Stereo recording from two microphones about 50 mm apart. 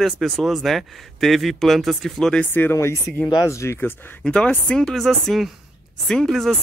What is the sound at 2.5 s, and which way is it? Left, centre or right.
Speech, left.